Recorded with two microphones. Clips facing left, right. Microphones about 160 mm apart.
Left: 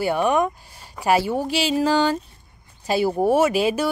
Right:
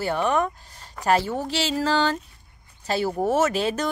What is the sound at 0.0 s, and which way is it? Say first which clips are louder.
Speech: left 3 dB; 15° left (ahead or behind).